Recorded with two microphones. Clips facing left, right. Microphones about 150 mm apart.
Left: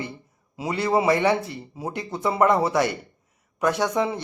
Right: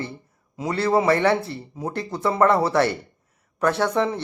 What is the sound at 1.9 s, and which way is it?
Speech, 20° left (ahead or behind).